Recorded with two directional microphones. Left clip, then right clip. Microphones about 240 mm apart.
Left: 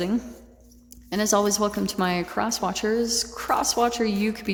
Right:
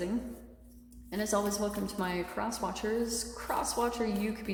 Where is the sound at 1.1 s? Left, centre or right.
Left.